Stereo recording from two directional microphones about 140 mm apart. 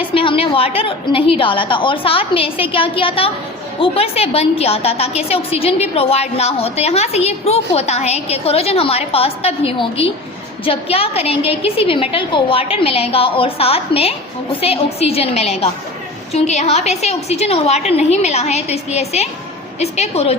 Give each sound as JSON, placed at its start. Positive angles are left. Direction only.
{"t": 0.0, "sound": "a woman's voice", "side_deg": 40}